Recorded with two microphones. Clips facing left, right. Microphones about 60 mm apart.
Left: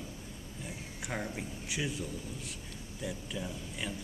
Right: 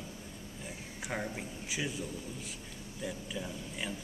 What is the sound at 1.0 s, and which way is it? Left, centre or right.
Speech, centre.